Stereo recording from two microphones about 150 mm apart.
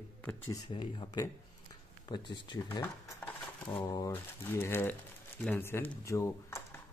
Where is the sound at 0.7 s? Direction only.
35° left (ahead or behind).